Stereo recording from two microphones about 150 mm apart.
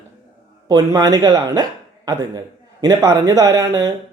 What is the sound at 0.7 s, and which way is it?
Speech, 25° right (ahead or behind).